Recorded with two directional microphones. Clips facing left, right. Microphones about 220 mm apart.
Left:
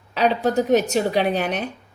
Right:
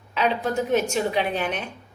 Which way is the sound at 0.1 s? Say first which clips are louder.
Left 4 dB; 35° left (ahead or behind).